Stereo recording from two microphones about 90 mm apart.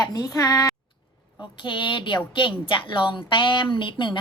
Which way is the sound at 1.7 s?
65° left (ahead or behind).